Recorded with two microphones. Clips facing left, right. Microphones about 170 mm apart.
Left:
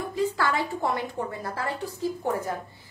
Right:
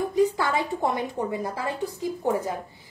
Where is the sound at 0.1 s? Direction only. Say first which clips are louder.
Right 1 dB; 20° right (ahead or behind).